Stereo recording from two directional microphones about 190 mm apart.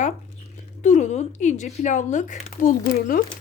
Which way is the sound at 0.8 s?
40° left (ahead or behind).